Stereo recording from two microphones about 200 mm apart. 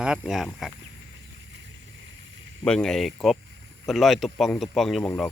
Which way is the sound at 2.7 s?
5° left (ahead or behind).